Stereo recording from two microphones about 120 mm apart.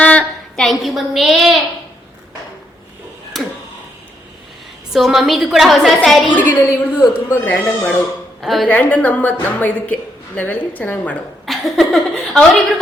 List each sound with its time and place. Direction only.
0.0 s a sound: 10° left (ahead or behind)
3.3 s tick-tock: centre (ahead or behind)
4.9 s a woman's voice: centre (ahead or behind)
6.3 s a woman's voice: 20° left (ahead or behind)
8.4 s a woman's voice: centre (ahead or behind)
8.7 s a woman's voice: 15° left (ahead or behind)
11.4 s a woman's voice: centre (ahead or behind)